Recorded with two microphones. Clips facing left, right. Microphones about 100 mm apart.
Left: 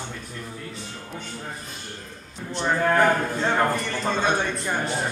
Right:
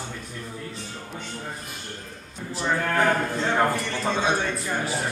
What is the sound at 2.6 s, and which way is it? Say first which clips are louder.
Speech: left 3 dB; 25° left (ahead or behind).